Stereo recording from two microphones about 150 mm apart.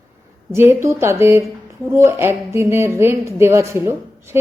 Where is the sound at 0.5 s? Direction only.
15° right (ahead or behind).